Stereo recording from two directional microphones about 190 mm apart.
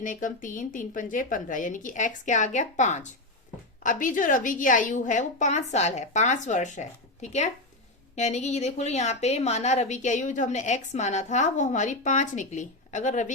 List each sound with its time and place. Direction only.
0.0 s a woman's voice: 45° left (ahead or behind)